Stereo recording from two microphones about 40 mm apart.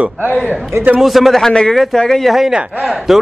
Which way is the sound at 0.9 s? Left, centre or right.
Centre.